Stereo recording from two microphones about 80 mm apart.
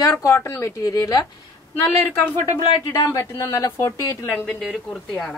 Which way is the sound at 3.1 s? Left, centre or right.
Left.